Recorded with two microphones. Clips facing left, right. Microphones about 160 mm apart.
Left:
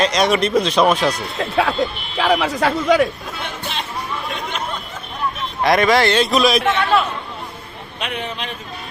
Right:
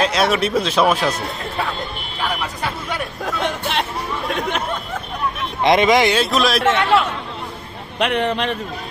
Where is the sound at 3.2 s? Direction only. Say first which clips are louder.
Right 6 dB; 70° right (ahead or behind).